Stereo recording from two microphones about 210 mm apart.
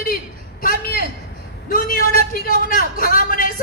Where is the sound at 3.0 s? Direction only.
45° left (ahead or behind).